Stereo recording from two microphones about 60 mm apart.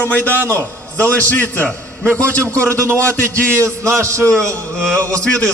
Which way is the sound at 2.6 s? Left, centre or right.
Right.